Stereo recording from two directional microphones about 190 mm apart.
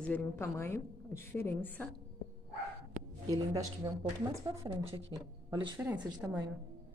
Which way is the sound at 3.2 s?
20° right (ahead or behind).